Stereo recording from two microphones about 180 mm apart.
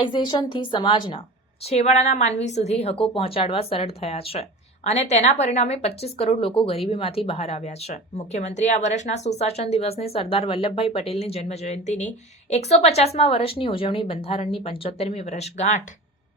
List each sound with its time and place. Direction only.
0.0 s a woman's voice: 25° left (ahead or behind)
1.6 s a woman's voice: 35° left (ahead or behind)